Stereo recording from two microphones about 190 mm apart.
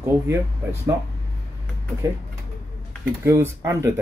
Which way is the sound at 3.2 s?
15° right (ahead or behind).